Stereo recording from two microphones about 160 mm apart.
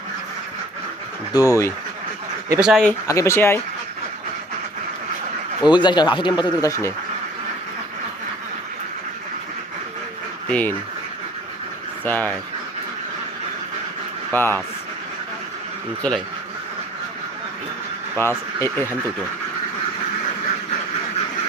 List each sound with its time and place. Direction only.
1.3 s speech: 20° left (ahead or behind)
2.6 s speech: 5° right (ahead or behind)
3.1 s speech: 20° left (ahead or behind)
5.6 s speech: 30° left (ahead or behind)
10.5 s speech: 10° left (ahead or behind)
12.0 s speech: 10° left (ahead or behind)
14.3 s speech: 15° left (ahead or behind)
16.0 s speech: 5° left (ahead or behind)
18.2 s speech: 15° left (ahead or behind)